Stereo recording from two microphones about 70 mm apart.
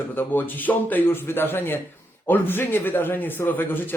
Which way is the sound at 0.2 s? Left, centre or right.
Left.